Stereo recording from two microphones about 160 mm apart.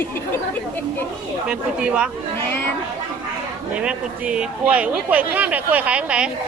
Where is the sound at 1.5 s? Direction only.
5° right (ahead or behind).